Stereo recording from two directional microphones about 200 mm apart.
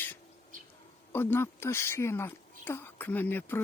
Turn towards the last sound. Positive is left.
turn(degrees=10)  # may be behind; listen again after turning